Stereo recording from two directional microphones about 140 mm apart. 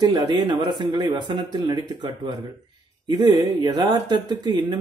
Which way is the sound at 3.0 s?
35° right (ahead or behind).